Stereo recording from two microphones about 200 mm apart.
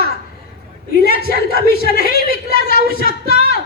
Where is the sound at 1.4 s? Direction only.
50° right (ahead or behind).